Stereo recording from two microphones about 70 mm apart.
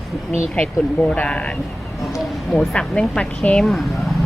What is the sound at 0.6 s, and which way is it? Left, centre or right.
Speech, centre.